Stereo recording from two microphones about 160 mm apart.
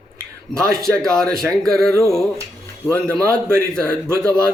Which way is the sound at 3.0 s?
5° left (ahead or behind).